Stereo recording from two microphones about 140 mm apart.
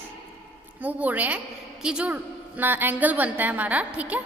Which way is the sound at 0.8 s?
10° right (ahead or behind).